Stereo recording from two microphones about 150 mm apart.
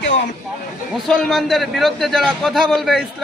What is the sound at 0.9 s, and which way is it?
A man's voice, 5° left (ahead or behind).